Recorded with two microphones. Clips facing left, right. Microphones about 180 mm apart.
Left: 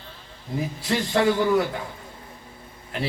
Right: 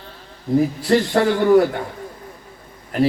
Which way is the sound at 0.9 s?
45° right (ahead or behind).